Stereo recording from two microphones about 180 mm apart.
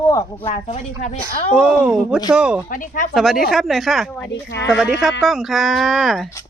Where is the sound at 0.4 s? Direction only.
35° left (ahead or behind).